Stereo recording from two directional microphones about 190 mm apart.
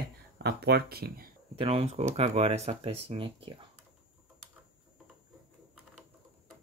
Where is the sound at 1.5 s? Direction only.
30° right (ahead or behind).